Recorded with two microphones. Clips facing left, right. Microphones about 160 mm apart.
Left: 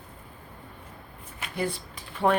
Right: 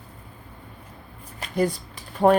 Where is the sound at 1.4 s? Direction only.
40° right (ahead or behind).